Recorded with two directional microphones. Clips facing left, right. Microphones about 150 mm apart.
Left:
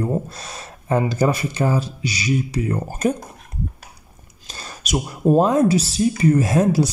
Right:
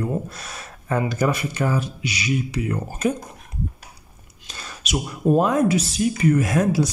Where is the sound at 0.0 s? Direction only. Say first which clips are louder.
Left 3 dB; 30° left (ahead or behind).